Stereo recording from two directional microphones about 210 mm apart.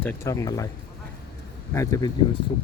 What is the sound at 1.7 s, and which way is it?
Speech, 15° left (ahead or behind).